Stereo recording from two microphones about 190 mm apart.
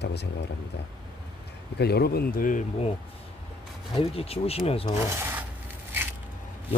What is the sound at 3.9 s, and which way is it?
Speech, 30° left (ahead or behind).